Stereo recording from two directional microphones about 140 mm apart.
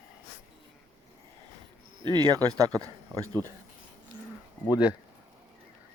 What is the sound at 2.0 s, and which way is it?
Speech, 30° right (ahead or behind).